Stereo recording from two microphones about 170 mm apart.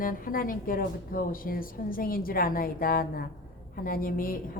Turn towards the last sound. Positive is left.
turn(degrees=60)  # may be behind; listen again after turning